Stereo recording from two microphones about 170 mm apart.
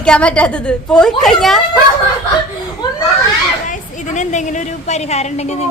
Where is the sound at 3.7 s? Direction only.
45° left (ahead or behind).